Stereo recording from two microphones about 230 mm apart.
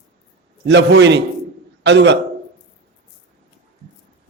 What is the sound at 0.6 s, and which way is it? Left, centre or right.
A man's voice, right.